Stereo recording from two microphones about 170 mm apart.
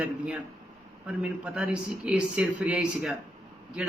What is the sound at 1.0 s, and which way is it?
A man's voice, 5° right (ahead or behind).